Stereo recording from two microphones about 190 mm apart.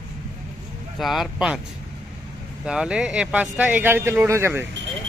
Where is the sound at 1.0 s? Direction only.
Centre (ahead or behind).